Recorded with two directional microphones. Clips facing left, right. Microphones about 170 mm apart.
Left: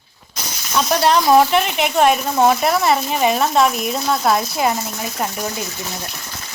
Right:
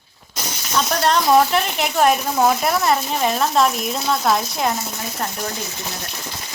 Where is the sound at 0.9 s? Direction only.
5° left (ahead or behind).